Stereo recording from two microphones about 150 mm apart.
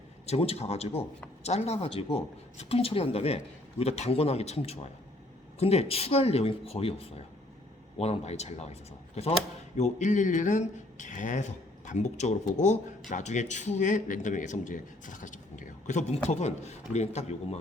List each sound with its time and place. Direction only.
0.3 s speech: 45° left (ahead or behind)
9.7 s a man's voice: 50° left (ahead or behind)